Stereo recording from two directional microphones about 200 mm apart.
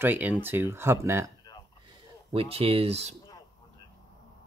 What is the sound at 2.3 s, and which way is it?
Speech, 30° right (ahead or behind).